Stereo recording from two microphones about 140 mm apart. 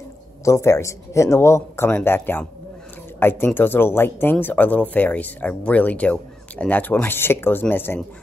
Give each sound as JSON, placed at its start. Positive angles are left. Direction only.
{"t": 0.5, "sound": "speech", "side_deg": 20}